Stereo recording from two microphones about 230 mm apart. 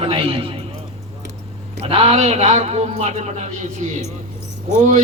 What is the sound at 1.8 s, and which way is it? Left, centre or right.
A man's voice, right.